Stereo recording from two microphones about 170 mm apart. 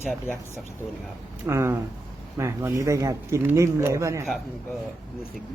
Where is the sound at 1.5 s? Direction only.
15° right (ahead or behind).